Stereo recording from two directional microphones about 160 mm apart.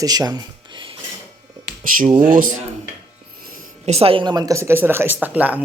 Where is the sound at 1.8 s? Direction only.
55° right (ahead or behind).